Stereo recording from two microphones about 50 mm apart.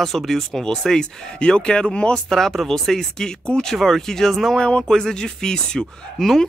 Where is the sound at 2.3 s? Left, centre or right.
Centre.